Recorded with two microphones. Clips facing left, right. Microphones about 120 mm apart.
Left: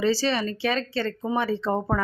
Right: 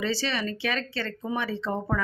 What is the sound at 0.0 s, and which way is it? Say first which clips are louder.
Speech: left 5 dB; 35° left (ahead or behind).